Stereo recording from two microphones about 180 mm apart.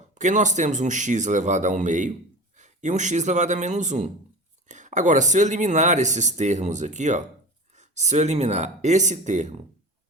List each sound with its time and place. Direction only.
0.1 s speech: 40° right (ahead or behind)